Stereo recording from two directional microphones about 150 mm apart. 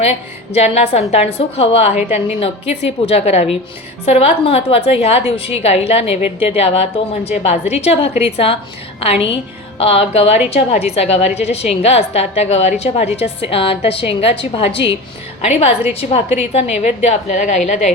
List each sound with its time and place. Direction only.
0.0 s a woman's voice: 45° left (ahead or behind)
2.0 s a woman's voice: 10° right (ahead or behind)
2.4 s a woman's voice: 40° left (ahead or behind)